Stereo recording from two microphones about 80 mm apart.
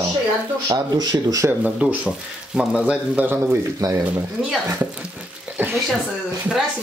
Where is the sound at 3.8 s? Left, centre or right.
Right.